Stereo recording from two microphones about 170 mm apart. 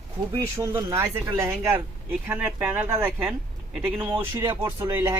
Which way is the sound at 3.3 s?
Centre (ahead or behind).